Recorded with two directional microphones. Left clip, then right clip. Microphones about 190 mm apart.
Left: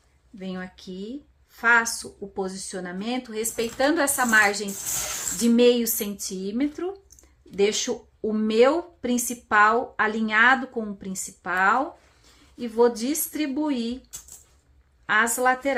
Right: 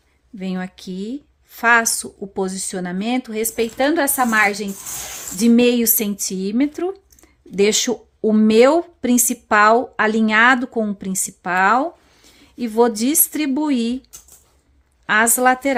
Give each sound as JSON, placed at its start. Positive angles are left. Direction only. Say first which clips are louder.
{"t": 0.3, "sound": "speech", "louder": "right 7 dB", "side_deg": -60}
{"t": 15.0, "sound": "speech", "louder": "right 6 dB", "side_deg": -60}